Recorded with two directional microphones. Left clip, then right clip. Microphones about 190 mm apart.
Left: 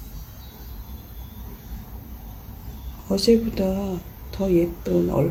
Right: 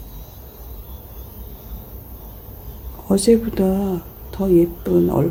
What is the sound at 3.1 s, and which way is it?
Speech, 30° right (ahead or behind).